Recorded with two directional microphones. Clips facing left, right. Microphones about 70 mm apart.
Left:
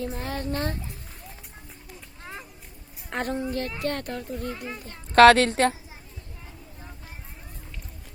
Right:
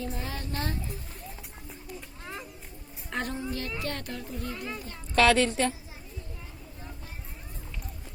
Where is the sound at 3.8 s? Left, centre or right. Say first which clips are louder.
Left 6 dB; left.